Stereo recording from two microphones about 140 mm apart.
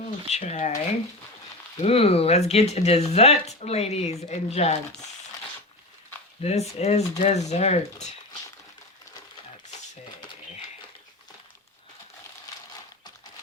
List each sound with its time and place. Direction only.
0.3 s speech: 50° left (ahead or behind)
1.8 s speech: 45° left (ahead or behind)
6.4 s speech: 50° left (ahead or behind)